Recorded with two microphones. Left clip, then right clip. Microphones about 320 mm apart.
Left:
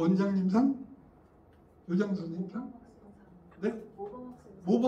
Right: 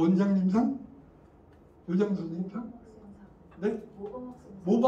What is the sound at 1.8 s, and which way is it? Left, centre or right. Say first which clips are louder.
Speech: right 3 dB; centre.